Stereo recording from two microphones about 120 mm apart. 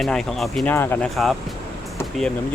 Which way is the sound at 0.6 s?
20° left (ahead or behind).